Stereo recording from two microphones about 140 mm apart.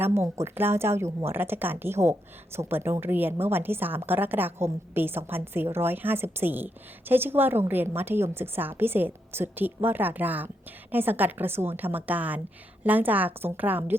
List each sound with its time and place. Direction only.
0.0 s speech: 20° right (ahead or behind)